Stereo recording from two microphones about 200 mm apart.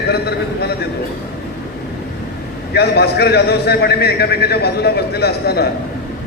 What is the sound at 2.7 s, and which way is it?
A man's voice, 55° left (ahead or behind).